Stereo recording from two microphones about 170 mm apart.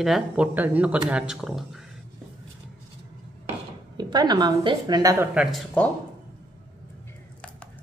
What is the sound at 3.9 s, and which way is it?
A woman's voice, 25° right (ahead or behind).